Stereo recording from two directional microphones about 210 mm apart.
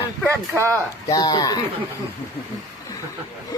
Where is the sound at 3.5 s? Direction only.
15° left (ahead or behind).